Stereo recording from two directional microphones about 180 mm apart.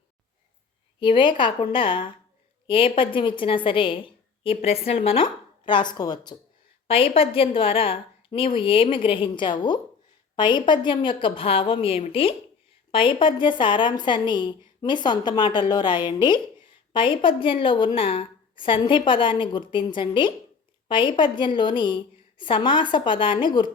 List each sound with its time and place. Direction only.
0.9 s a woman's voice: 25° left (ahead or behind)